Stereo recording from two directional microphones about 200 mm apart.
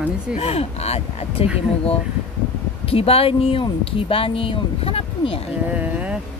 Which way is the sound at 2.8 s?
30° left (ahead or behind).